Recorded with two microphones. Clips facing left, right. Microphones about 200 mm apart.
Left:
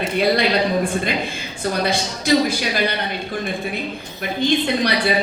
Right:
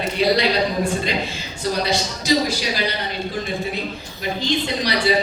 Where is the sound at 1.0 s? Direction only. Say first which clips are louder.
Left 1 dB; 55° left (ahead or behind).